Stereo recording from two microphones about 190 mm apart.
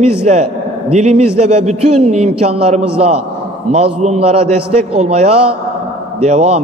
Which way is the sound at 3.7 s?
30° right (ahead or behind).